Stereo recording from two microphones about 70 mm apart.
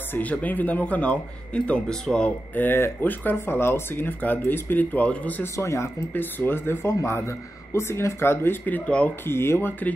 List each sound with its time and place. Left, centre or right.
0.1 s speech: left
2.5 s speech: left
5.4 s speech: left
6.1 s speech: left
8.6 s speech: left
9.2 s speech: left